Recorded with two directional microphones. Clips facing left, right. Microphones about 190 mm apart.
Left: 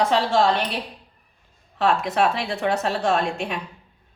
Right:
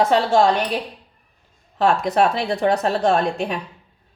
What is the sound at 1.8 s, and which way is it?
A woman's voice, 40° right (ahead or behind).